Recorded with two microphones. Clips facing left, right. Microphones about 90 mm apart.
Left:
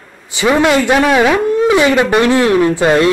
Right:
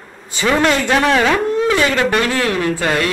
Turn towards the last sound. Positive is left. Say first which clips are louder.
# left 7 dB
turn(degrees=20)  # may be behind; listen again after turning